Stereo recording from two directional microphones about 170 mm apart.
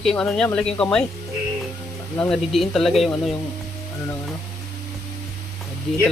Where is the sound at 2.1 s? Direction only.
5° left (ahead or behind).